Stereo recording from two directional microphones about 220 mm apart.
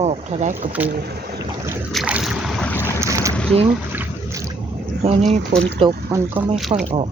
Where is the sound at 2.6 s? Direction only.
10° left (ahead or behind).